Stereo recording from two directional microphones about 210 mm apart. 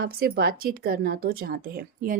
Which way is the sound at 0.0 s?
45° right (ahead or behind).